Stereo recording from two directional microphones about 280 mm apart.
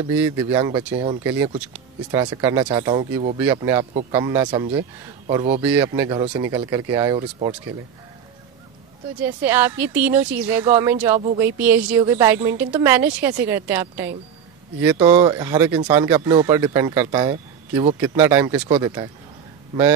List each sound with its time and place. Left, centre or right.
0.0 s speech: centre; by 3.3 s right
3.3 s speech: centre
5.6 s speech: centre
9.2 s speech: centre
15.1 s speech: centre